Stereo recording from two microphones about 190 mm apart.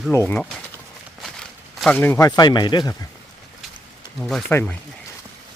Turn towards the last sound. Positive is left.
turn(degrees=5)  # may be behind; listen again after turning